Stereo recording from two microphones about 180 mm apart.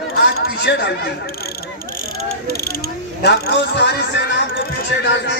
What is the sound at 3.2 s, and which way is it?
A man's voice, 65° left (ahead or behind).